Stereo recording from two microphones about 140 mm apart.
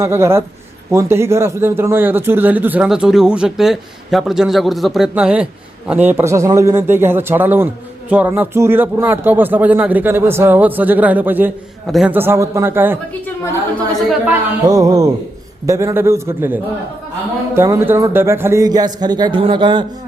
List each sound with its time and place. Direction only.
0.0 s a man's voice: 20° right (ahead or behind)
11.9 s a man's voice: centre (ahead or behind)
12.1 s a man's voice: 15° right (ahead or behind)
13.2 s a woman's voice: 15° left (ahead or behind)
14.7 s speech: 25° right (ahead or behind)